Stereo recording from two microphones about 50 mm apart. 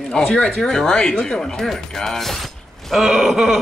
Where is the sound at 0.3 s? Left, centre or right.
Centre.